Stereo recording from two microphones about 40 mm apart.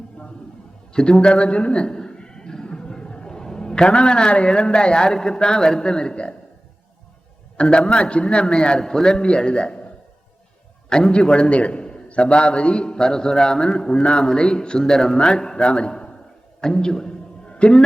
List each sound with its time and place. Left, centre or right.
0.9 s a man's voice: left
7.5 s a man's voice: left
8.8 s a man's voice: centre
10.8 s a man's voice: centre
17.4 s a sound: left